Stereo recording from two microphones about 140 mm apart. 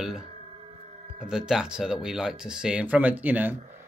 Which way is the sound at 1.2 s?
5° right (ahead or behind).